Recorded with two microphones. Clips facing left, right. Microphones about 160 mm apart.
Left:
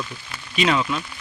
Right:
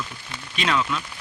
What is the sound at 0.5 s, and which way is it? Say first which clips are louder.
Speech: left 3 dB; 5° left (ahead or behind).